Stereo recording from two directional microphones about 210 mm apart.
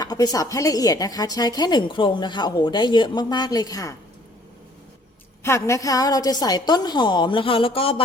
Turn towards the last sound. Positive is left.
turn(degrees=25)  # may be behind; listen again after turning